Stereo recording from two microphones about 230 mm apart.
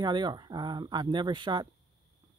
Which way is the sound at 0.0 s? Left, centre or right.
Centre.